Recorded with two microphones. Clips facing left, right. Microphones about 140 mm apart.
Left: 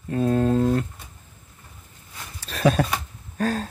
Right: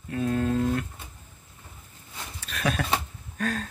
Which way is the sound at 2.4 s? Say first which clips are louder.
Left 8 dB; 35° left (ahead or behind).